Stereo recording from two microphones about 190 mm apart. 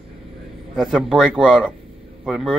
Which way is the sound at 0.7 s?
Centre (ahead or behind).